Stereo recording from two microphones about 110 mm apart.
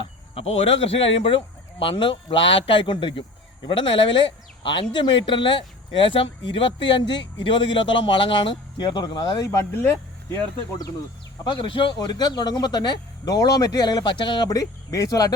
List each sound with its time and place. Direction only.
0.3 s a man's voice: 65° left (ahead or behind); by 9.5 s 45° left (ahead or behind)
9.5 s speech: 25° left (ahead or behind)
11.4 s speech: 45° left (ahead or behind)